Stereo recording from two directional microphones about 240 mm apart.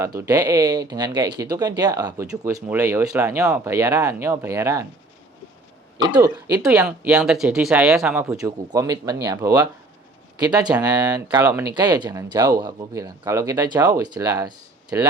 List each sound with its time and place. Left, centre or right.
0.2 s speech: centre
6.0 s speech: centre
6.6 s speech: centre